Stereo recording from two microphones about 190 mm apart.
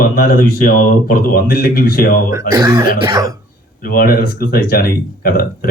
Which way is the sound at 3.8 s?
50° left (ahead or behind).